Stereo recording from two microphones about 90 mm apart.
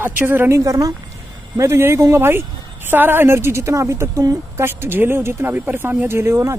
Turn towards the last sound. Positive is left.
turn(degrees=-30)  # may be behind; listen again after turning